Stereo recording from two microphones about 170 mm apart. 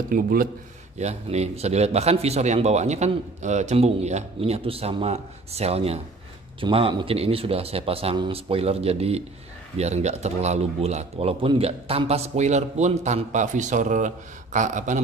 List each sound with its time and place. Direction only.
0.1 s speech: 60° right (ahead or behind)
0.9 s speech: 40° right (ahead or behind)